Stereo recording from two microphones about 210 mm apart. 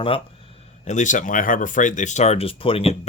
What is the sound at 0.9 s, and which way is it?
Speech, 35° left (ahead or behind).